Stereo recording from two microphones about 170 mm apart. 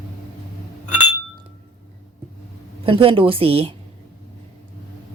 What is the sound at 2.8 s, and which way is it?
Speech, 30° right (ahead or behind).